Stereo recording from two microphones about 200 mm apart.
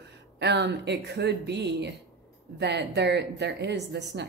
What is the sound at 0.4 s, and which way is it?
A woman's voice, 60° right (ahead or behind).